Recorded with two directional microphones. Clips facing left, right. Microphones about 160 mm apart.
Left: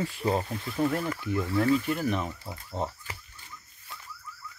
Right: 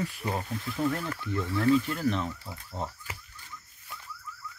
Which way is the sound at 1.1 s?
15° left (ahead or behind).